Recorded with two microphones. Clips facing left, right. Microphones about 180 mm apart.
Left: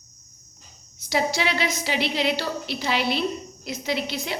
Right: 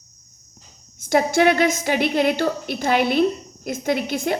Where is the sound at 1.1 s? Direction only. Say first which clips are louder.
Right 8 dB; 50° right (ahead or behind).